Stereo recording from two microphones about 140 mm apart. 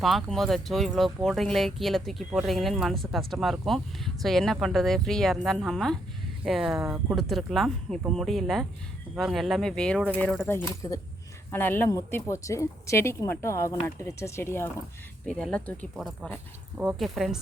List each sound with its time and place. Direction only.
0.0 s a woman's voice: centre (ahead or behind); by 14.7 s 20° left (ahead or behind)
15.3 s speech: 5° left (ahead or behind)